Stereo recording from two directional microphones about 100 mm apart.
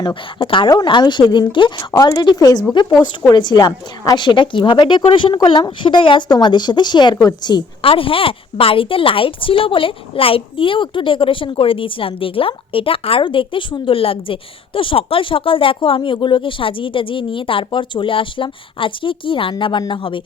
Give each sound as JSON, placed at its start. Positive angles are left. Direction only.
{"t": 0.0, "sound": "a woman's voice", "side_deg": 55}
{"t": 2.0, "sound": "speech", "side_deg": 35}
{"t": 4.2, "sound": "speech", "side_deg": 55}
{"t": 7.8, "sound": "a woman's voice", "side_deg": 65}